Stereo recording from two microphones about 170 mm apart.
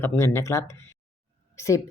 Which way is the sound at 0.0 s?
15° left (ahead or behind).